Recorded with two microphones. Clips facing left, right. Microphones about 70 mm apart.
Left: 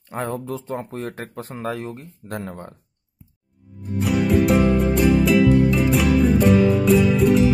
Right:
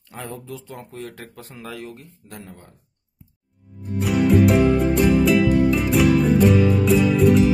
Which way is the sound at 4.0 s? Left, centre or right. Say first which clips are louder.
Right 2 dB; centre.